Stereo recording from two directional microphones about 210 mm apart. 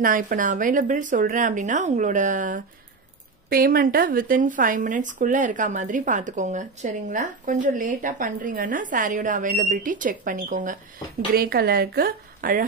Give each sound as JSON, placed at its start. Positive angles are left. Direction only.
{"t": 0.0, "sound": "speech", "side_deg": -40}